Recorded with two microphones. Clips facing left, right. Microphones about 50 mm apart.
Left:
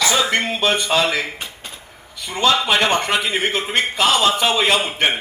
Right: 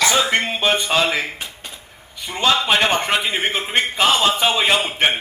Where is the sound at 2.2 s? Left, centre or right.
Centre.